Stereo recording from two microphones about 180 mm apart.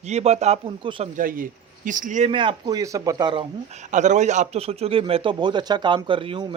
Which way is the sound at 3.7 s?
40° right (ahead or behind).